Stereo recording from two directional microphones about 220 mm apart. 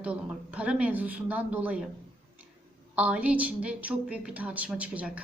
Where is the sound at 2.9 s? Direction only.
5° right (ahead or behind).